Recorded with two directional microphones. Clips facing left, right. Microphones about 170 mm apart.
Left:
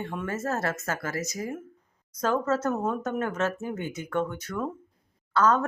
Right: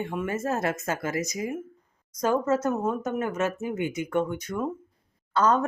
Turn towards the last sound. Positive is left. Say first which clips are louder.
# even
turn(degrees=-15)  # may be behind; listen again after turning